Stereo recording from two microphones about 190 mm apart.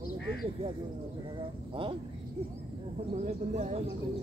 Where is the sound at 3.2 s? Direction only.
35° right (ahead or behind).